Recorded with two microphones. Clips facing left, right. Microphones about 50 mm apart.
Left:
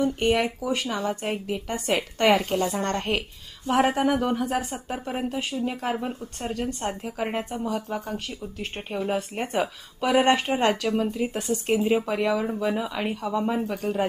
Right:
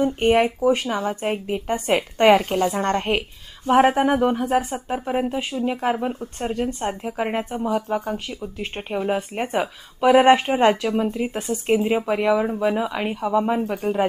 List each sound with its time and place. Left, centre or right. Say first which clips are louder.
0.0 s speech: right 5 dB; right
6.5 s speech: right 3 dB; centre